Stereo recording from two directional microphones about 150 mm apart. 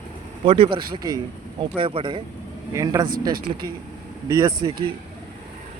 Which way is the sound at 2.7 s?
25° right (ahead or behind).